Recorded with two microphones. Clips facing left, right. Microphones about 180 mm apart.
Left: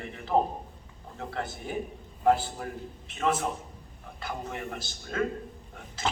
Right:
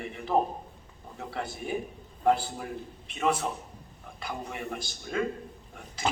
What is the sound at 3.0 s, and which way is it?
A man's voice, 15° right (ahead or behind).